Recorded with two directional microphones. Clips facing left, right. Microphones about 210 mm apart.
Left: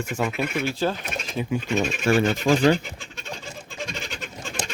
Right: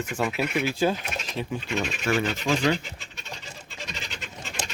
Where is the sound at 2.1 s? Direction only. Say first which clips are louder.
Left 5 dB; 45° left (ahead or behind).